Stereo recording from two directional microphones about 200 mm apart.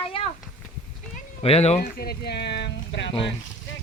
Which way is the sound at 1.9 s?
50° left (ahead or behind).